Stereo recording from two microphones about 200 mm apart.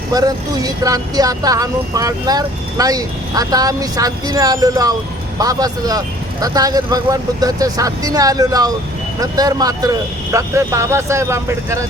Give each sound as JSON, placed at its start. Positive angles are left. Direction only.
{"t": 0.1, "sound": "speech", "side_deg": -20}